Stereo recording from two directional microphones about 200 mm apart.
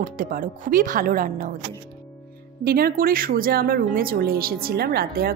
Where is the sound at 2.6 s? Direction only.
50° right (ahead or behind).